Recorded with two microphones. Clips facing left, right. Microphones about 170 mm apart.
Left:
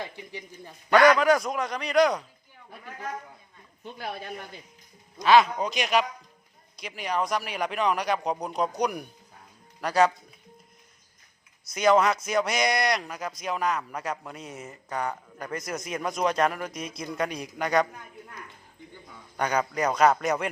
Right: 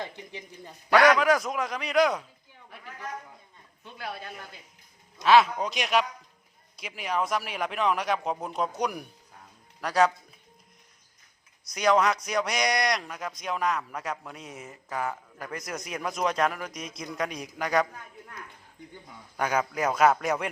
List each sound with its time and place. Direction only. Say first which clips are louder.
0.3 s a man's voice: left 1 dB; 20° right (ahead or behind)
0.9 s speech: left 2 dB; centre (ahead or behind)
4.0 s speech: left 2 dB; 20° left (ahead or behind)
5.2 s speech: left 1 dB; centre (ahead or behind)
11.6 s speech: left 2 dB; centre (ahead or behind)
19.4 s speech: left 1 dB; 5° right (ahead or behind)